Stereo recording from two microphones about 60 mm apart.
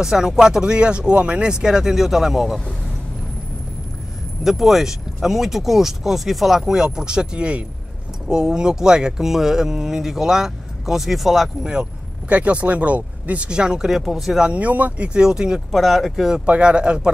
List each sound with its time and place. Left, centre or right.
0.0 s speech: centre
4.4 s speech: centre
11.7 s speech: centre
14.4 s speech: right
15.1 s speech: centre
15.7 s speech: centre
16.4 s speech: centre